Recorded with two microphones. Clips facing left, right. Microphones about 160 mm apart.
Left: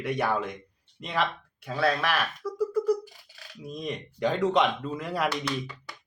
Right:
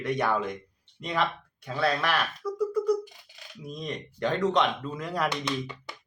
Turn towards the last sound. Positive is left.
turn(degrees=-20)  # may be behind; listen again after turning